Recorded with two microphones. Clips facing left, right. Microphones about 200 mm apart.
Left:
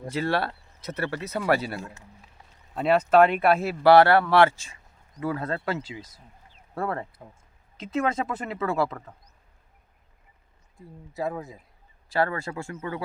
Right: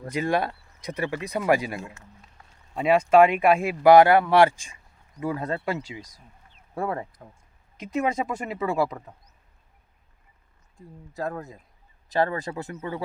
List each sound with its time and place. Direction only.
0.1 s speech: 15° right (ahead or behind)
11.1 s speech: 5° left (ahead or behind)
12.0 s speech: 20° right (ahead or behind)